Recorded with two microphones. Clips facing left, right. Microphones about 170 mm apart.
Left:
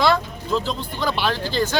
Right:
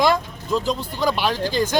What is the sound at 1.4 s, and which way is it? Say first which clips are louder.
Speech: right 1 dB; 45° right (ahead or behind).